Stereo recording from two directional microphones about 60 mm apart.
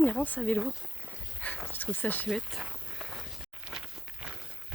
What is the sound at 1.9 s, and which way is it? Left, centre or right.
Speech, left.